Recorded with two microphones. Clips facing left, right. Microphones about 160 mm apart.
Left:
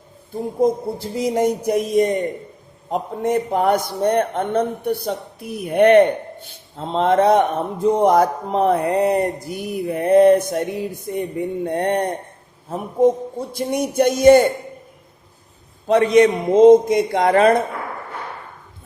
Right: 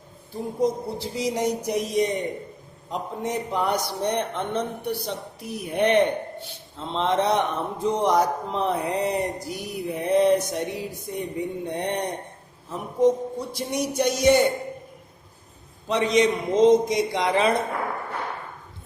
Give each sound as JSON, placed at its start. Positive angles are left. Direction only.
{"t": 0.6, "sound": "a man's voice", "side_deg": 50}
{"t": 13.5, "sound": "a man's voice", "side_deg": 50}
{"t": 15.9, "sound": "a man's voice", "side_deg": 55}